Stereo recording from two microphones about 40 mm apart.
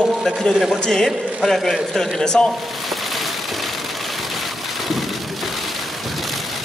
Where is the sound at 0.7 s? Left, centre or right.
Centre.